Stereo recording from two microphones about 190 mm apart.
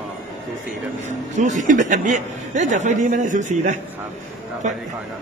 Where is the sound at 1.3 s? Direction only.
40° right (ahead or behind).